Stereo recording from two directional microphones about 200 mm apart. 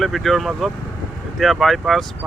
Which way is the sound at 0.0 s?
Centre (ahead or behind).